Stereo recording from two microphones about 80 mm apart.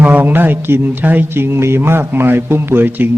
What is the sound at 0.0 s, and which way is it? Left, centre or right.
Speech, right.